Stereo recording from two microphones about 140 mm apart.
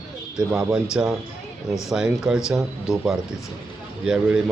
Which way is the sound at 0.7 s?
5° right (ahead or behind).